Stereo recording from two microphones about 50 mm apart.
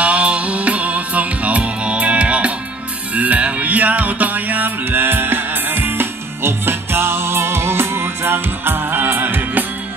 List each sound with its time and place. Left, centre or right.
0.0 s music: right